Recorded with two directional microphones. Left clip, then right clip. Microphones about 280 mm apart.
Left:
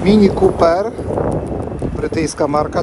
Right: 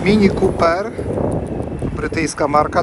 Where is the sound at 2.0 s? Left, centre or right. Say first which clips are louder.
Left 1 dB; centre.